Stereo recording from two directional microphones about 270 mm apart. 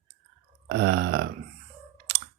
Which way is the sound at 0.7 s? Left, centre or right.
Right.